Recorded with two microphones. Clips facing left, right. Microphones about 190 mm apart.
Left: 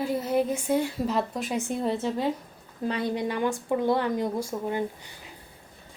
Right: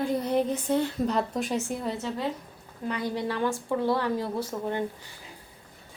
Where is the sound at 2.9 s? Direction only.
20° left (ahead or behind).